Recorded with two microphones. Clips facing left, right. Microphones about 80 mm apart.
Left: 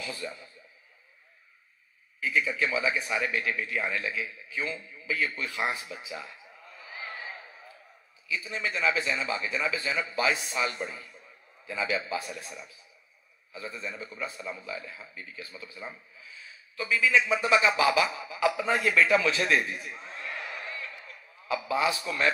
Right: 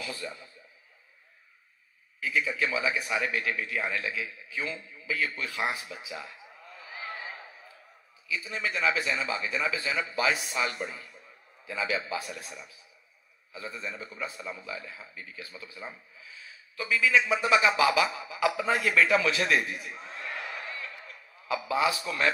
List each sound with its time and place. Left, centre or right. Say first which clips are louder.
2.1 s speech: left 1 dB; left
8.3 s speech: even; left
21.5 s speech: even; left